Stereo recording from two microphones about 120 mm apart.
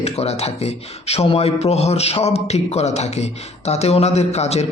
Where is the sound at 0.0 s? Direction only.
60° left (ahead or behind).